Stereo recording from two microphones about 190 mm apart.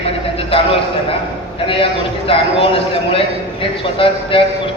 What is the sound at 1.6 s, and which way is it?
A man's voice, 30° left (ahead or behind).